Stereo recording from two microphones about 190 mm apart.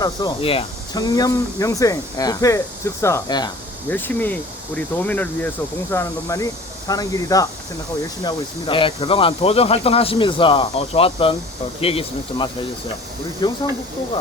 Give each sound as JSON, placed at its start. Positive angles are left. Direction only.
{"t": 0.0, "sound": "speech", "side_deg": 20}
{"t": 3.8, "sound": "speech", "side_deg": 10}